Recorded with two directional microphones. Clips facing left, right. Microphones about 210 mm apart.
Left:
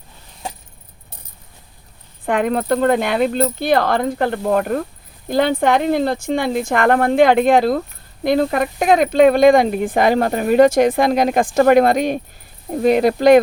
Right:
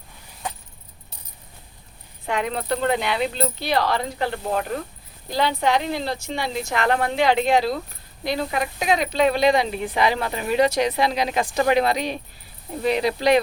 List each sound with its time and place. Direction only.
2.2 s speech: 50° left (ahead or behind)